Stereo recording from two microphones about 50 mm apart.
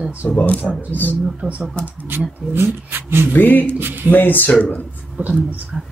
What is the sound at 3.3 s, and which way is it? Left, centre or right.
Speech, left.